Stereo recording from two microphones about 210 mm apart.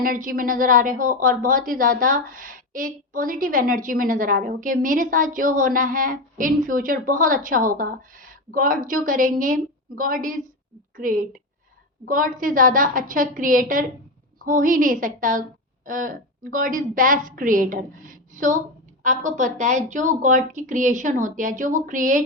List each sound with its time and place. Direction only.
0.0 s a woman's voice: 40° right (ahead or behind)